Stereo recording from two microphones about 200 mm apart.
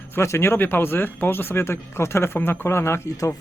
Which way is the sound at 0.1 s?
15° left (ahead or behind).